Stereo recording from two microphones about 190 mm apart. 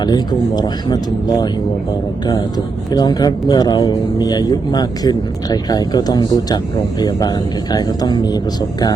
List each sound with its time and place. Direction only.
0.0 s speech: 20° left (ahead or behind)
2.9 s speech: 20° left (ahead or behind)